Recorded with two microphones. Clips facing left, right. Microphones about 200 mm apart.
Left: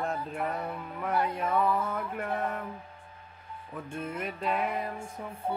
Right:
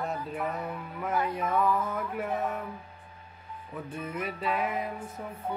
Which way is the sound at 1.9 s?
5° right (ahead or behind).